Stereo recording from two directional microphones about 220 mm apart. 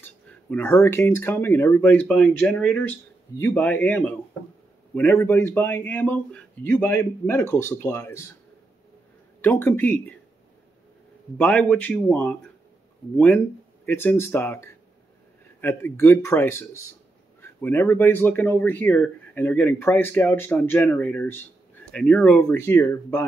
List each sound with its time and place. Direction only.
0.0 s speech: 5° left (ahead or behind)
9.4 s speech: 10° left (ahead or behind)
11.3 s speech: 5° left (ahead or behind)
13.8 s speech: 10° left (ahead or behind)